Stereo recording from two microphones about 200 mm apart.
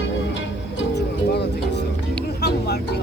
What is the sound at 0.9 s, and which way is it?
Music, 55° left (ahead or behind).